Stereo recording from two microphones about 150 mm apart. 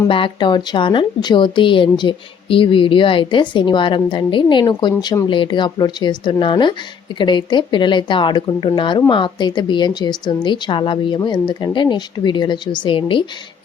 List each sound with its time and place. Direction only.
0.1 s a woman's voice: 35° left (ahead or behind)